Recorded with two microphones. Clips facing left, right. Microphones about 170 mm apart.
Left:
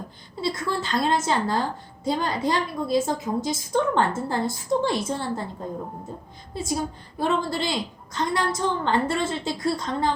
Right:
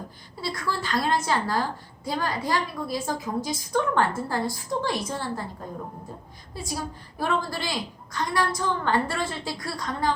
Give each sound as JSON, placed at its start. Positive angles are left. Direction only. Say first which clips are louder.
{"t": 0.4, "sound": "a woman's voice", "louder": "left 3 dB", "side_deg": 25}
{"t": 6.5, "sound": "a woman's voice", "louder": "left 5 dB", "side_deg": 25}